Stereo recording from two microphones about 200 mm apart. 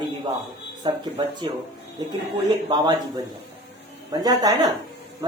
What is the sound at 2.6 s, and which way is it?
Speech, 20° right (ahead or behind).